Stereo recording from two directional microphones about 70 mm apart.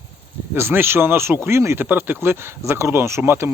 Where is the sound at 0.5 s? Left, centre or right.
Right.